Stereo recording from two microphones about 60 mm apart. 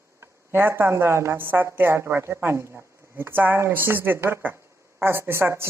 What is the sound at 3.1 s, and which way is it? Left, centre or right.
A woman's voice, right.